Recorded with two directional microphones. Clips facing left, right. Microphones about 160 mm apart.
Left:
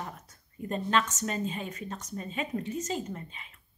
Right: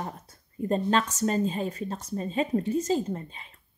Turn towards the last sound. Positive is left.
turn(degrees=-35)  # may be behind; listen again after turning